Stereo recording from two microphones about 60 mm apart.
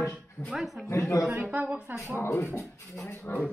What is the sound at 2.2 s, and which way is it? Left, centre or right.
Speech, left.